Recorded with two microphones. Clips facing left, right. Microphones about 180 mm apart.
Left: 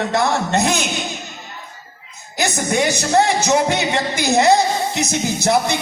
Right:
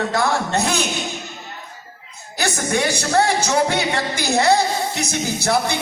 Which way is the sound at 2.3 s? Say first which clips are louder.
Left 2 dB; 20° left (ahead or behind).